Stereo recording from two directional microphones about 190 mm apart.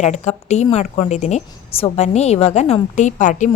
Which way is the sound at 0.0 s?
40° left (ahead or behind).